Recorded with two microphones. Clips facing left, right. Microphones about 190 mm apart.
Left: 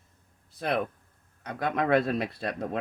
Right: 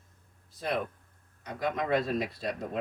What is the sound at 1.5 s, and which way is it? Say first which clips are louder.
A man's voice: left 4 dB; 65° left (ahead or behind).